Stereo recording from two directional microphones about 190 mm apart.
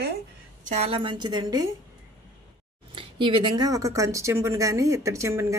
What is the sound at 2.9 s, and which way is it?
Speech, 25° right (ahead or behind).